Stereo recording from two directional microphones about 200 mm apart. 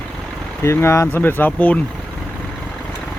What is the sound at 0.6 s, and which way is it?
Speech, 15° left (ahead or behind).